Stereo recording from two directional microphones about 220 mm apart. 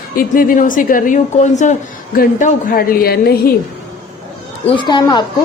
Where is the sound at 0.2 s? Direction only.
40° left (ahead or behind).